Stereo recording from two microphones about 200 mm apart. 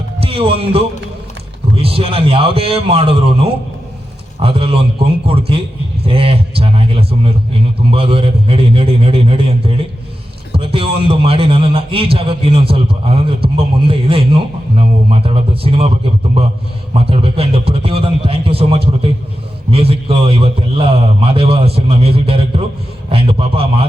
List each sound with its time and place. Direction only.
0.2 s a man's voice: 30° right (ahead or behind)
16.9 s a man's voice: 30° right (ahead or behind)